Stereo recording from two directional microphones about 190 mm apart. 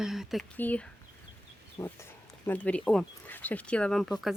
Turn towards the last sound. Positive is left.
turn(degrees=0)  # may be behind; listen again after turning